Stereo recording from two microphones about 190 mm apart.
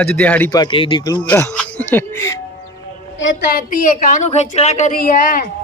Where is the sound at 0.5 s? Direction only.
25° left (ahead or behind).